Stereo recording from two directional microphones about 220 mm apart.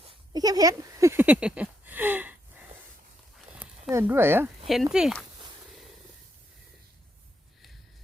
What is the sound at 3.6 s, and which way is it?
Speech, 10° right (ahead or behind).